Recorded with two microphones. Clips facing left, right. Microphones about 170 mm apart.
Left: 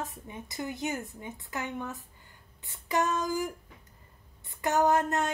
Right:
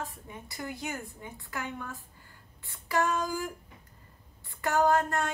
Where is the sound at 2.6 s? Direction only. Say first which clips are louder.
Even; 20° left (ahead or behind).